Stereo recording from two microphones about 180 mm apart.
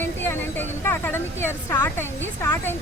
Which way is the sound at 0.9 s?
10° left (ahead or behind).